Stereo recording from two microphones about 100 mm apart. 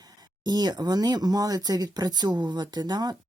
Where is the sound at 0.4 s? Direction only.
45° right (ahead or behind).